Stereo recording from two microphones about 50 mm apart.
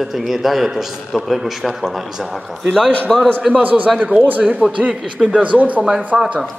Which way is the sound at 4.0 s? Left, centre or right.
Centre.